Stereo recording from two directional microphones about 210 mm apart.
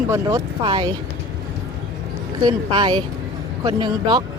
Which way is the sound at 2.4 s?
20° right (ahead or behind).